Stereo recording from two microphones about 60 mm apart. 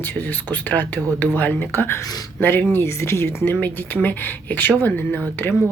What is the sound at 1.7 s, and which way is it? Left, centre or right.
Speech, left.